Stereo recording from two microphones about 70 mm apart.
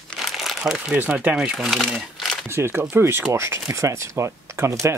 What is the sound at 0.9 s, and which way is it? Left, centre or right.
Speech, right.